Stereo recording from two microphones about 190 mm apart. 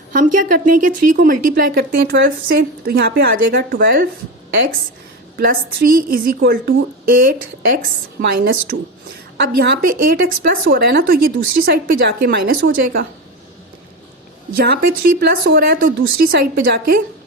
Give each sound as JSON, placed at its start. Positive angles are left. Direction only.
{"t": 0.1, "sound": "a woman's voice", "side_deg": -45}
{"t": 5.4, "sound": "a woman's voice", "side_deg": -50}
{"t": 9.6, "sound": "a woman's voice", "side_deg": -50}
{"t": 14.5, "sound": "a woman's voice", "side_deg": -55}